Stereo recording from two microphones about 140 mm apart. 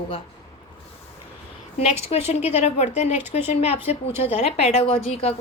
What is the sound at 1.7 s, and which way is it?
A woman's voice, 45° left (ahead or behind).